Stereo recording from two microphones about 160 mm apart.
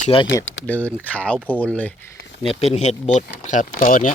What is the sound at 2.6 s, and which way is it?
Speech, 45° left (ahead or behind).